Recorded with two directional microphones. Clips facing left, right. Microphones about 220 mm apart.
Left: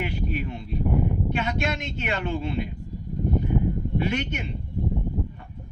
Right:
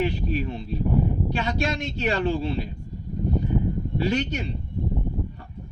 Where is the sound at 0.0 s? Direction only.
30° right (ahead or behind).